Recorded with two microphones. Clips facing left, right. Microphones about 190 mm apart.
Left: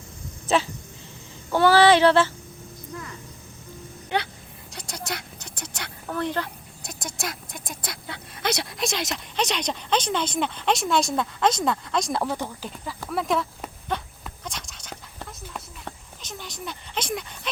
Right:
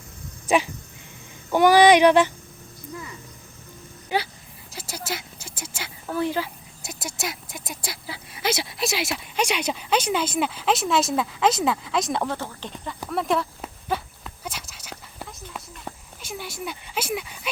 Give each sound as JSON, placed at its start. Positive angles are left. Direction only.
{"t": 0.4, "sound": "speech", "side_deg": -15}
{"t": 1.5, "sound": "child singing", "side_deg": -15}
{"t": 4.1, "sound": "speech", "side_deg": -5}
{"t": 4.7, "sound": "a sound", "side_deg": -5}
{"t": 7.7, "sound": "speech", "side_deg": -5}
{"t": 13.1, "sound": "horse", "side_deg": 0}